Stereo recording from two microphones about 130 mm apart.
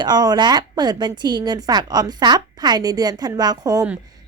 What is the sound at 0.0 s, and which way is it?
A woman's voice, 30° right (ahead or behind).